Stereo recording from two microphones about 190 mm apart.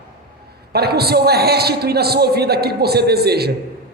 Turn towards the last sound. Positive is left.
turn(degrees=-55)  # may be behind; listen again after turning